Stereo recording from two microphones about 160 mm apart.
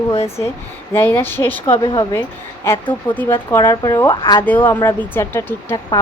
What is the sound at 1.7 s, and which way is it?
Speech, 30° left (ahead or behind).